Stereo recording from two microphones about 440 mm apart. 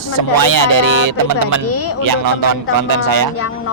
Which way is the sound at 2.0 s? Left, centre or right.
Right.